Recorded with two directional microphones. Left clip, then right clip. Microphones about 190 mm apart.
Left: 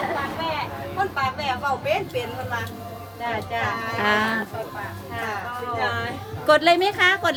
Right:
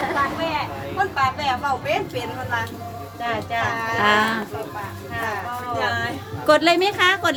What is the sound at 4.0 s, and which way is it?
Speech, 5° right (ahead or behind).